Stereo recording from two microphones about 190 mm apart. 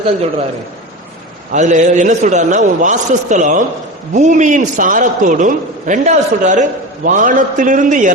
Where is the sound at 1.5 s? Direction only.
40° right (ahead or behind).